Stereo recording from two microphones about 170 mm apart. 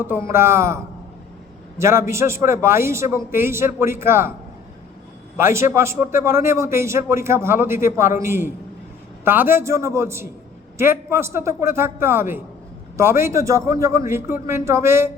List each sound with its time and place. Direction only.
0.0 s a man's voice: 15° right (ahead or behind)
1.8 s a man's voice: 15° right (ahead or behind)
5.4 s a man's voice: 15° right (ahead or behind)